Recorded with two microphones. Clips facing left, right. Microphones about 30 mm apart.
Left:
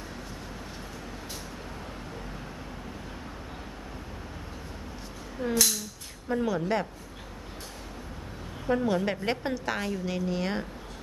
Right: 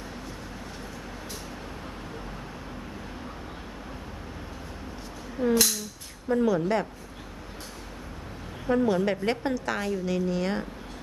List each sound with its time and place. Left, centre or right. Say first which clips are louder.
5.4 s speech: right 6 dB; right
6.2 s a woman's voice: right 4 dB; centre
8.6 s a woman's voice: right 3 dB; centre